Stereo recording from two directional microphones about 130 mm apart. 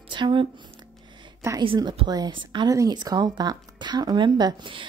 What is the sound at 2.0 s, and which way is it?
A woman's voice, 30° right (ahead or behind).